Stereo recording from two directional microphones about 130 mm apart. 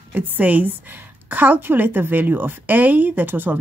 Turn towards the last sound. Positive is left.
turn(degrees=-15)  # may be behind; listen again after turning